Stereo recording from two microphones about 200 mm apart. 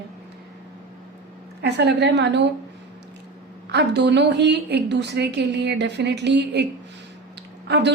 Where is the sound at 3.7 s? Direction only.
60° right (ahead or behind).